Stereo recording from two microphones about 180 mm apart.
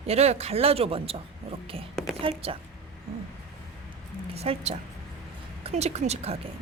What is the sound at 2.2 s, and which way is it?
Speech, 30° right (ahead or behind).